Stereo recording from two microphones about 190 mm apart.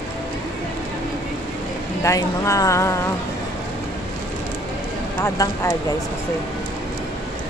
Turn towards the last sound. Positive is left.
turn(degrees=20)  # may be behind; listen again after turning